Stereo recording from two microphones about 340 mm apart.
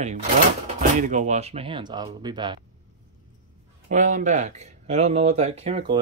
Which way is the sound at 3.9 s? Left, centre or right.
Right.